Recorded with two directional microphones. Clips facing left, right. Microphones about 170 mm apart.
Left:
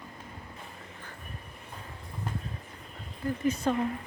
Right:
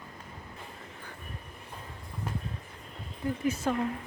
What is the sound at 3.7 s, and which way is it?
Speech, 5° right (ahead or behind).